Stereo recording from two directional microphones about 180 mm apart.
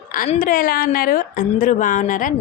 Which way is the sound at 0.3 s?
50° left (ahead or behind).